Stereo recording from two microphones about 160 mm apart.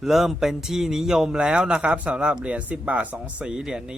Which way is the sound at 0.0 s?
Centre (ahead or behind).